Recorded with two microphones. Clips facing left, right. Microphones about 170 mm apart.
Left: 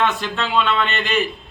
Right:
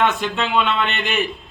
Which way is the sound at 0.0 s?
15° right (ahead or behind).